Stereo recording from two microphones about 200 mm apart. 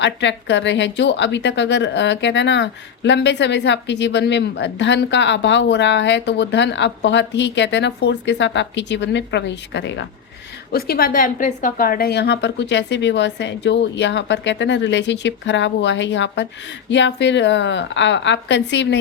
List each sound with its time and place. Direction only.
0.0 s a woman's voice: 60° left (ahead or behind)
10.7 s a woman's voice: 50° left (ahead or behind)